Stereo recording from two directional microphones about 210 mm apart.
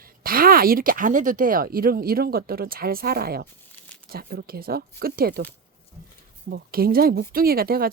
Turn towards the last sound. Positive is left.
turn(degrees=-45)  # may be behind; listen again after turning